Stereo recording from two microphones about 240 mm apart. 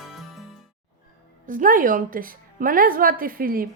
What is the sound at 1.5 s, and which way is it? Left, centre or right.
Speech, right.